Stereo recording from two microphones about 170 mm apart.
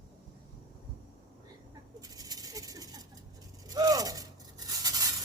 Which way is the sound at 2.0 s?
20° right (ahead or behind).